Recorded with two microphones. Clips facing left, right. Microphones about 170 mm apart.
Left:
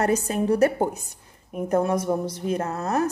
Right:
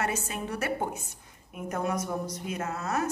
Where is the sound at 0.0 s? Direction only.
40° left (ahead or behind).